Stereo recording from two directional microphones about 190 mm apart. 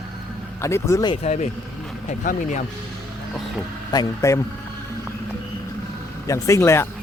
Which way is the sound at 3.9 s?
20° left (ahead or behind).